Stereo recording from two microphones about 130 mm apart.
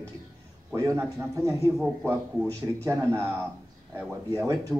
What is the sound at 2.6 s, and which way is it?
Speech, 15° right (ahead or behind).